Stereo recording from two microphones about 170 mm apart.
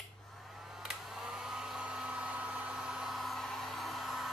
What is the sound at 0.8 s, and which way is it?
Hair dryer, 5° right (ahead or behind).